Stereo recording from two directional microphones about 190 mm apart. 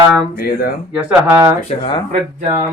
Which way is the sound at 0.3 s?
55° left (ahead or behind).